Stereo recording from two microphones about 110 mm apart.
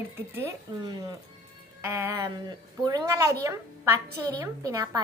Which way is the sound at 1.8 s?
25° right (ahead or behind).